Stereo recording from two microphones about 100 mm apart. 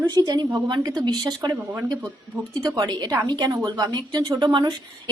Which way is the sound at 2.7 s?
40° right (ahead or behind).